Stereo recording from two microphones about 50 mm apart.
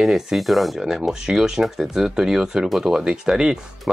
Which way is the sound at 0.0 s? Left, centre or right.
Centre.